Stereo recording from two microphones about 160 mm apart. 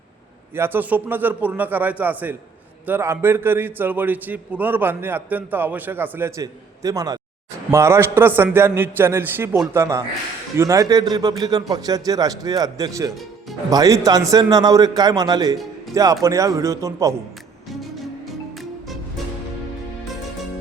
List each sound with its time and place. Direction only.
0.5 s a man's voice: 15° right (ahead or behind)